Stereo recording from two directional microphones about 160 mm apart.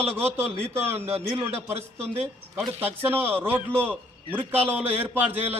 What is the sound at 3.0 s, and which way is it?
A man's voice, 15° right (ahead or behind).